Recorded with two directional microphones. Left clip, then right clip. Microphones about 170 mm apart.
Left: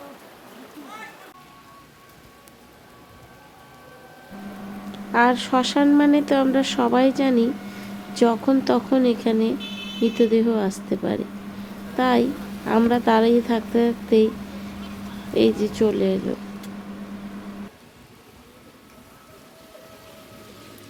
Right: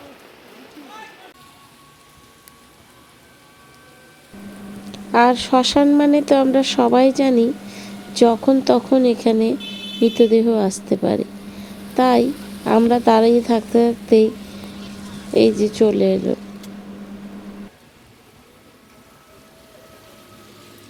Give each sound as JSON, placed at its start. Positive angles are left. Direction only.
{"t": 4.9, "sound": "a woman's voice", "side_deg": -35}
{"t": 15.3, "sound": "speech", "side_deg": -30}